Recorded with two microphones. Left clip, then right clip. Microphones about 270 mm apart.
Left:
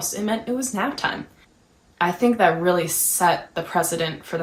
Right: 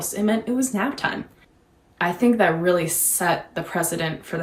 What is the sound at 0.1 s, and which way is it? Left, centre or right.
A woman's voice, centre.